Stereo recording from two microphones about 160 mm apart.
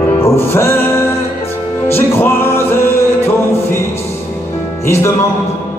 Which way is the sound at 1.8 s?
15° left (ahead or behind).